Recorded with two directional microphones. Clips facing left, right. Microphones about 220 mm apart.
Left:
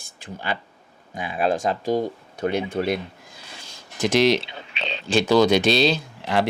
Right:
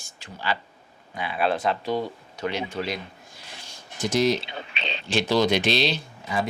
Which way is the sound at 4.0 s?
90° left.